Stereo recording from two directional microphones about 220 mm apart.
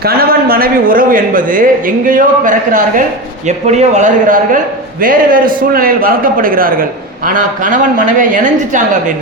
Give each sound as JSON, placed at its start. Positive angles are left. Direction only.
{"t": 0.0, "sound": "a man's voice", "side_deg": -45}